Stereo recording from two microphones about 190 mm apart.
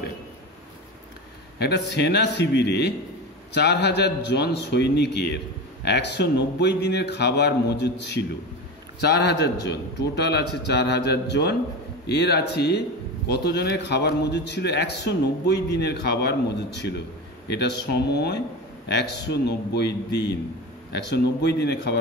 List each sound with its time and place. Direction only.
1.6 s a man's voice: 60° left (ahead or behind)